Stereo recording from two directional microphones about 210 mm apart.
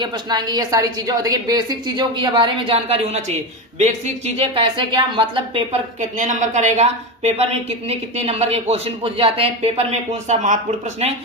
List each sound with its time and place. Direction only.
0.0 s a woman's voice: 20° right (ahead or behind); by 10.6 s 35° right (ahead or behind)